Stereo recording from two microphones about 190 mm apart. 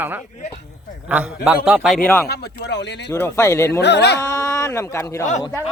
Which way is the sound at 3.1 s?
15° left (ahead or behind).